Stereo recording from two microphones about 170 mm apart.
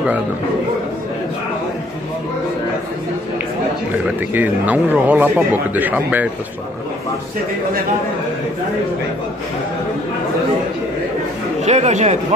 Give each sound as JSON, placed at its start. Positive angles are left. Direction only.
{"t": 4.3, "sound": "a man's voice", "side_deg": -10}
{"t": 11.6, "sound": "speech", "side_deg": -40}